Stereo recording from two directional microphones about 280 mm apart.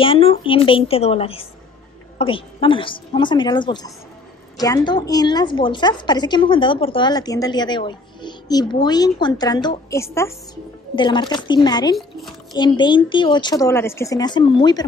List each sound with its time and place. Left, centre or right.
0.0 s a woman's voice: centre